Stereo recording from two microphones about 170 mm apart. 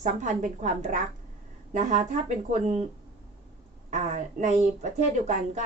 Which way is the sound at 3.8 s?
45° right (ahead or behind).